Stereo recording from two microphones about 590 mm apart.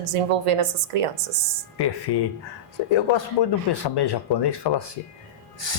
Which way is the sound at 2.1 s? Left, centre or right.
Left.